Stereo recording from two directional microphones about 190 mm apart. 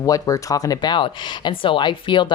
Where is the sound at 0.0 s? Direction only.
20° left (ahead or behind).